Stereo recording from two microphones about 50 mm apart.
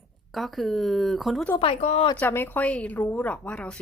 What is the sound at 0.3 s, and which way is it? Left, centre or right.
Speech, centre.